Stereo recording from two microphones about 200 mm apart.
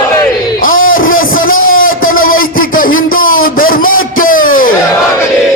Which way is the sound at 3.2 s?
90° left.